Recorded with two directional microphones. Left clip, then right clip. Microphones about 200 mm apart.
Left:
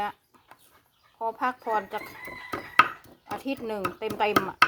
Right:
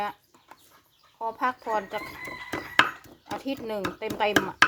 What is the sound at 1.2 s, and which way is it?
Speech, 30° left (ahead or behind).